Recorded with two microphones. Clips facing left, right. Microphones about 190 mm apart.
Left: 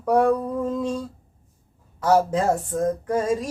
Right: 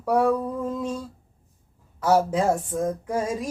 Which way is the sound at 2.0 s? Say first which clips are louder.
Left 1 dB; 10° right (ahead or behind).